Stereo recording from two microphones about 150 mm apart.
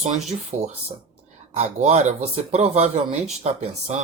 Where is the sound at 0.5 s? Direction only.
55° right (ahead or behind).